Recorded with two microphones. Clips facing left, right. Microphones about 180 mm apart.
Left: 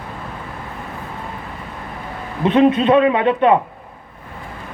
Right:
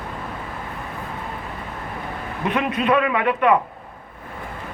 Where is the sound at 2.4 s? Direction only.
30° left (ahead or behind).